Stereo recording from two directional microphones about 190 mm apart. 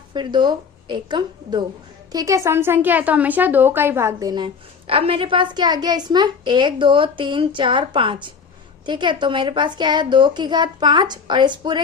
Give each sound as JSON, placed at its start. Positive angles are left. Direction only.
{"t": 0.1, "sound": "a woman's voice", "side_deg": -25}